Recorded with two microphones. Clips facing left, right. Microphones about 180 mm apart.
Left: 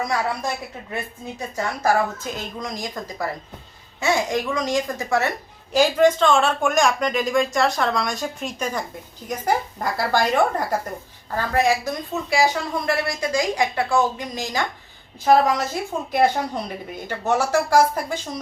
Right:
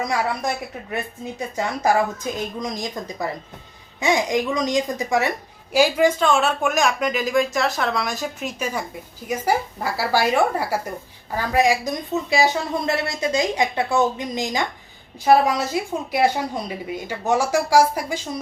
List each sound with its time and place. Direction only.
1.5 s a woman's voice: 15° right (ahead or behind)